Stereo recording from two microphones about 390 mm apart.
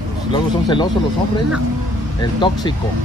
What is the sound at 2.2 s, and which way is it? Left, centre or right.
Speech, centre.